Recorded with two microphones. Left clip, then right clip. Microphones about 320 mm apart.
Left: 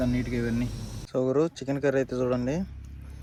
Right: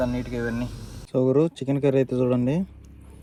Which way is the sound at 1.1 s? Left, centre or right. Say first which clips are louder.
Right 4 dB; right.